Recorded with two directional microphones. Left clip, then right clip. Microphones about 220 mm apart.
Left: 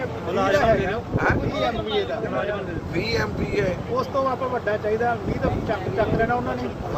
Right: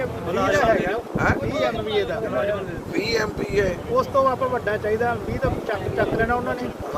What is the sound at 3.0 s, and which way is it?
Speech, 45° right (ahead or behind).